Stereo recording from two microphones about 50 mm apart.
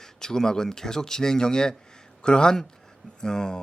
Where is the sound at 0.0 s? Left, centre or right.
Centre.